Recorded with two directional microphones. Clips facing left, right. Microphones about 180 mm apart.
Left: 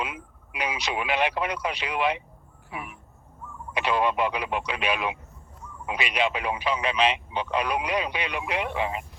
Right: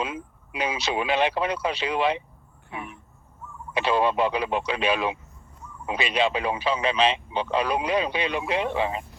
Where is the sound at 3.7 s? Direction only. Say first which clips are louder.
Right 2 dB; 30° right (ahead or behind).